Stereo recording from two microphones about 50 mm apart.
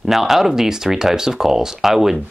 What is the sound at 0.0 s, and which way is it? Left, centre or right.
Speech, centre.